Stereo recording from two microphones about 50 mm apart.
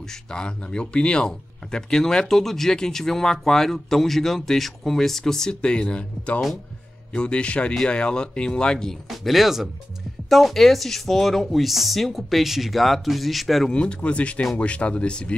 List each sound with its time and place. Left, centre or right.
0.1 s speech: centre
9.1 s speech: centre
13.7 s speech: left